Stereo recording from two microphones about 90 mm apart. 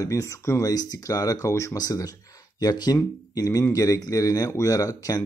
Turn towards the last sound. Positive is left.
turn(degrees=40)  # may be behind; listen again after turning